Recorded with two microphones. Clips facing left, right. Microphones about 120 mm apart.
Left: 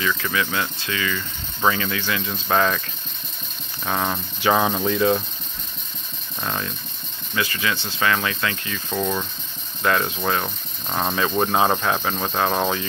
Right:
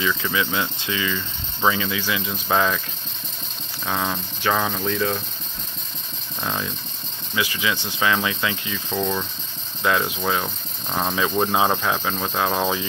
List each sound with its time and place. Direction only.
0.2 s speech: 15° right (ahead or behind)
3.8 s speech: 5° left (ahead or behind)
7.3 s speech: 15° right (ahead or behind)
8.9 s speech: 5° left (ahead or behind)
9.8 s speech: 5° right (ahead or behind)